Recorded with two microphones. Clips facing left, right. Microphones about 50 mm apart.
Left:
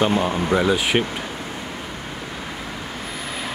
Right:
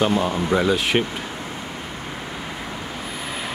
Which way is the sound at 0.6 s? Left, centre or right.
Centre.